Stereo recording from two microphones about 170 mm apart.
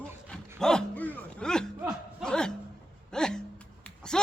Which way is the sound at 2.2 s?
5° left (ahead or behind).